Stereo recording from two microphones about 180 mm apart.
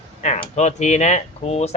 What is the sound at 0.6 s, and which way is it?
Speech, 40° left (ahead or behind).